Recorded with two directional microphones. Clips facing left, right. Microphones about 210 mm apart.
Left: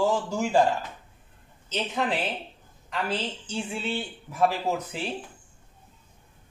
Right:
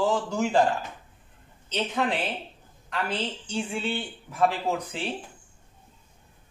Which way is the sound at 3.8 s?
10° left (ahead or behind).